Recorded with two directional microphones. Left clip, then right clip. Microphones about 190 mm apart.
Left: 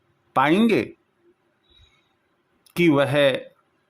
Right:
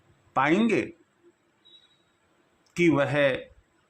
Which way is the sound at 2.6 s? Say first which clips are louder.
Left 4 dB; 30° left (ahead or behind).